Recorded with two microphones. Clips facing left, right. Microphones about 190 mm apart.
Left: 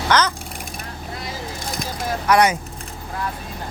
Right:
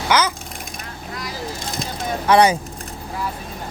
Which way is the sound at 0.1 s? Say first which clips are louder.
Even; 10° right (ahead or behind).